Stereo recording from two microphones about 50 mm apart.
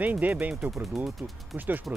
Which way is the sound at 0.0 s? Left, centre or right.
Right.